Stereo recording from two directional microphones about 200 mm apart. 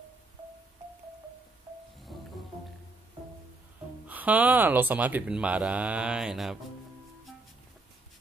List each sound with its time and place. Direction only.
2.1 s music: centre (ahead or behind)
4.1 s speech: 10° right (ahead or behind)